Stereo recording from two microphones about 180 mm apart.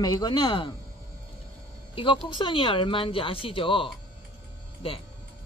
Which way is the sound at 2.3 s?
30° left (ahead or behind).